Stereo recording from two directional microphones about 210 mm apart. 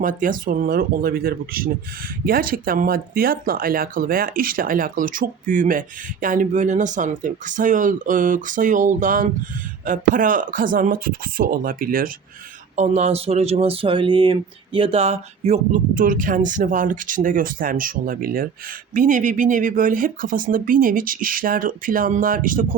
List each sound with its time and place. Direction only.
0.0 s speech: 40° right (ahead or behind)